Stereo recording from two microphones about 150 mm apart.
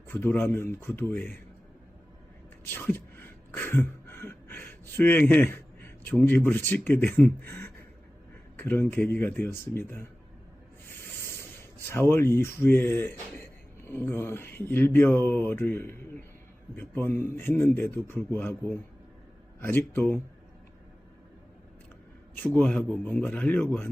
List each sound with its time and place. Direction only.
0.1 s speech: 15° left (ahead or behind)
2.6 s a sound: 15° left (ahead or behind)
6.8 s speech: 10° left (ahead or behind)
10.8 s snake: 15° left (ahead or behind)
11.9 s speech: 15° left (ahead or behind)
22.4 s speech: 10° left (ahead or behind)